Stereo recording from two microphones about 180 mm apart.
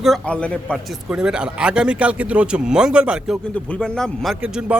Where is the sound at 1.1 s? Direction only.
5° right (ahead or behind).